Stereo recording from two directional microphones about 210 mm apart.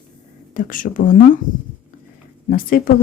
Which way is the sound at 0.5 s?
40° left (ahead or behind).